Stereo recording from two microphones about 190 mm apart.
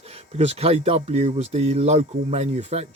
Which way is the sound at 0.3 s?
35° right (ahead or behind).